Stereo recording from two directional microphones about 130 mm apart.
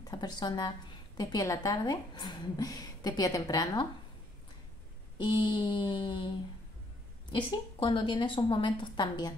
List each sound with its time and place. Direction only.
0.0 s a woman's voice: 30° left (ahead or behind)
5.1 s a woman's voice: 35° left (ahead or behind)